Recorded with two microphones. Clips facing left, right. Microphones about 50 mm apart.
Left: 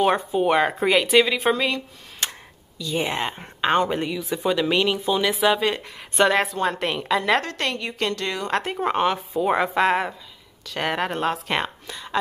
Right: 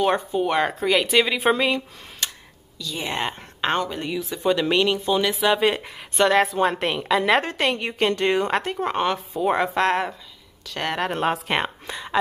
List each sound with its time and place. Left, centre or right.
0.0 s a woman's voice: centre
2.2 s a sound: left
2.8 s a woman's voice: left
3.1 s a woman's voice: centre
7.4 s a woman's voice: centre
8.6 s a woman's voice: centre
11.3 s a woman's voice: centre
11.6 s a woman's voice: right